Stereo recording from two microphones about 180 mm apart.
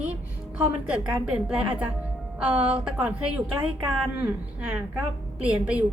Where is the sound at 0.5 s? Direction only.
5° right (ahead or behind).